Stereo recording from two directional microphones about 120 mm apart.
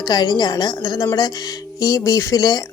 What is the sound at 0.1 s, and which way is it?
Speech, 35° left (ahead or behind).